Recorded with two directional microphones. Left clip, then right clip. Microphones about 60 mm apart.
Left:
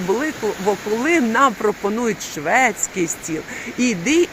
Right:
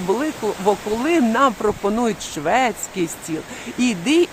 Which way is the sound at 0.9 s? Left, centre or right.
Right.